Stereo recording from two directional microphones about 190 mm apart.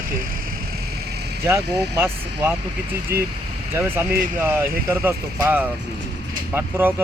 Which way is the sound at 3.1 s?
55° right (ahead or behind).